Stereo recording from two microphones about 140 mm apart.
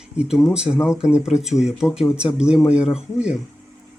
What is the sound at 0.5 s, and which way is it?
Speech, 5° right (ahead or behind).